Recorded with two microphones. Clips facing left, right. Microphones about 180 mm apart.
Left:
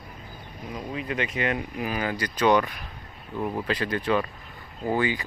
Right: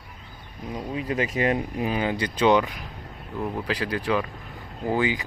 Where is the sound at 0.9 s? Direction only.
35° right (ahead or behind); by 2.7 s 15° right (ahead or behind).